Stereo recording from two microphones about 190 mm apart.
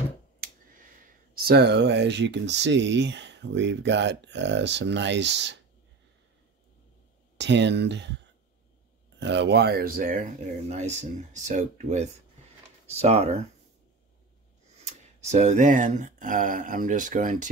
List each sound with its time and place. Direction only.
1.3 s speech: 55° right (ahead or behind)
7.3 s speech: 65° right (ahead or behind)
9.2 s speech: 65° right (ahead or behind); by 13.3 s 35° right (ahead or behind)
14.7 s speech: 35° right (ahead or behind)